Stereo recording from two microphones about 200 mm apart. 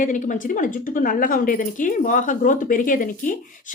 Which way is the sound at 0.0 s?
40° left (ahead or behind).